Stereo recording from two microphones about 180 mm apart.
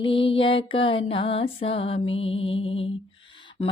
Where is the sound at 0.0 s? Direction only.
30° left (ahead or behind).